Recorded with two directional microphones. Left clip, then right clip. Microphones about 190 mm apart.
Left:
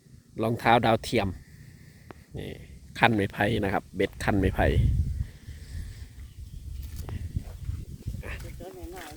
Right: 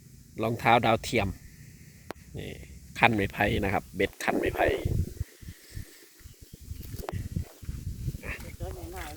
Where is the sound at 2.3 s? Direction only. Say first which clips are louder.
Left 1 dB; 25° left (ahead or behind).